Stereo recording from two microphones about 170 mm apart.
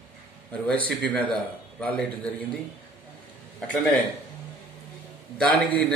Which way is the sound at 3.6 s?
5° left (ahead or behind).